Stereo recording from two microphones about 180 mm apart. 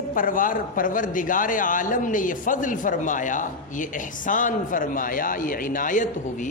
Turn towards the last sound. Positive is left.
turn(degrees=45)  # may be behind; listen again after turning